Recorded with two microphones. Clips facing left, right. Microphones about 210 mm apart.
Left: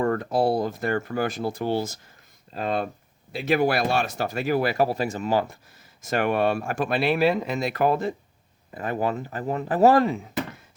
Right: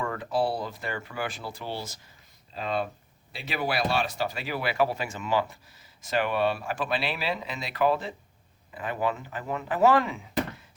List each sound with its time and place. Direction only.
0.0 s speech: 45° left (ahead or behind)